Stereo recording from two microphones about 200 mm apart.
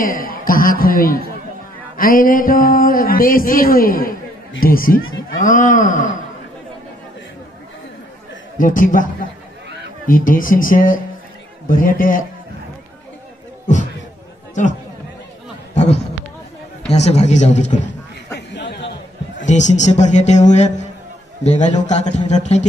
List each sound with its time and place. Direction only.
0.0 s a man's voice: 45° left (ahead or behind)
8.5 s a man's voice: 40° left (ahead or behind)
15.7 s a sound: 35° left (ahead or behind)
16.8 s speech: 35° left (ahead or behind)
18.5 s a sound: 60° left (ahead or behind)
19.4 s speech: 35° left (ahead or behind)